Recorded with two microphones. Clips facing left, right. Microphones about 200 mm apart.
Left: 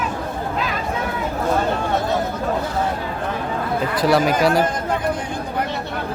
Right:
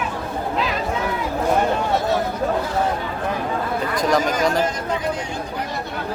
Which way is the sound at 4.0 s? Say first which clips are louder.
Left 3 dB; 5° left (ahead or behind).